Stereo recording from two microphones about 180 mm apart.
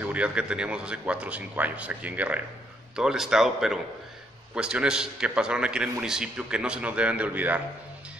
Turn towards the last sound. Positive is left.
turn(degrees=-10)  # may be behind; listen again after turning